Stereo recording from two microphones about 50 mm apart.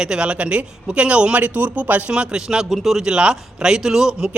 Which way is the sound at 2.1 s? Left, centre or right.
Centre.